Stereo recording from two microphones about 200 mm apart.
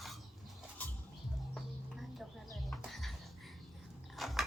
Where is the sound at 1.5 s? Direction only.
Centre (ahead or behind).